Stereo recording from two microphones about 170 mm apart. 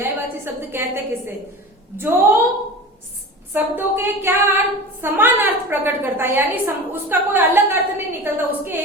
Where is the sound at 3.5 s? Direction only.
15° right (ahead or behind).